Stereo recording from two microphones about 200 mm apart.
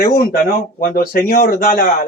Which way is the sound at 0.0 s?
45° left (ahead or behind).